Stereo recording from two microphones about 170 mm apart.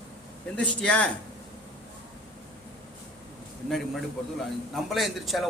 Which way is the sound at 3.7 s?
Centre (ahead or behind).